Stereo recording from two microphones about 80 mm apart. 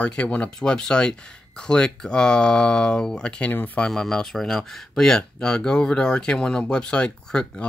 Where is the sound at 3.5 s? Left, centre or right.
Left.